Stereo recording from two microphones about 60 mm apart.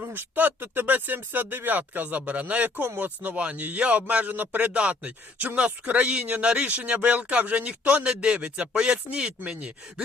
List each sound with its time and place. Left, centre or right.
0.0 s speech: right; by 9.3 s centre